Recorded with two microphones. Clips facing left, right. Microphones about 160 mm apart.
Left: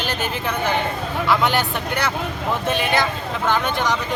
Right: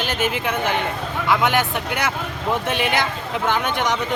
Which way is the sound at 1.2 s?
15° right (ahead or behind).